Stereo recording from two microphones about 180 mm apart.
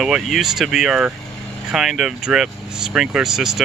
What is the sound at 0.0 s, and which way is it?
Speech, centre (ahead or behind).